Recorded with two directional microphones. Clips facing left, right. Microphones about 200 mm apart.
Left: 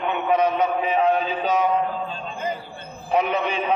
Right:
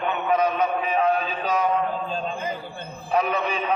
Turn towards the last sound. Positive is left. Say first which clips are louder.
# left 2 dB
turn(degrees=20)  # may be behind; listen again after turning